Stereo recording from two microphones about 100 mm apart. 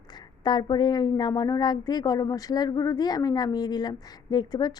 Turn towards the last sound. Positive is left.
turn(degrees=45)  # may be behind; listen again after turning